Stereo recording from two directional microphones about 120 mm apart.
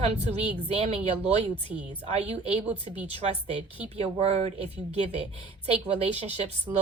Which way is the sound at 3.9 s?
65° right (ahead or behind).